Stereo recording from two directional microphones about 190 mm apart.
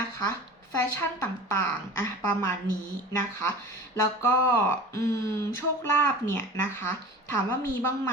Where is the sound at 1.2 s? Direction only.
10° left (ahead or behind).